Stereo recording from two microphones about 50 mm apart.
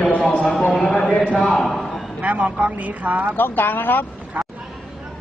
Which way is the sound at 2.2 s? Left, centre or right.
Right.